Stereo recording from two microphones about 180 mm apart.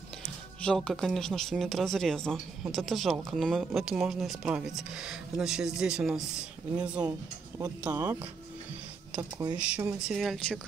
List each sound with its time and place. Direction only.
0.6 s speech: 5° left (ahead or behind); by 8.3 s 15° right (ahead or behind)
9.6 s speech: 5° right (ahead or behind)